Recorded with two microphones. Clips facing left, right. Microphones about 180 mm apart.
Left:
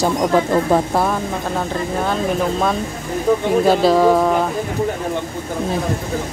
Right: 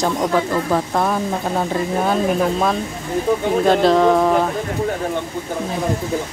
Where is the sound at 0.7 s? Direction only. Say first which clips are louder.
Left 3 dB; 20° left (ahead or behind).